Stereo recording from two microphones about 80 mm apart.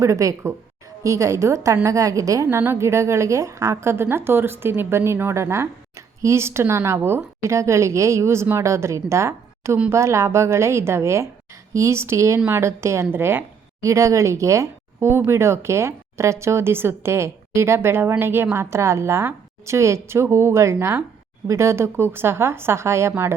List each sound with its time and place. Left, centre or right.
0.0 s a woman's voice: right
2.6 s a woman's voice: right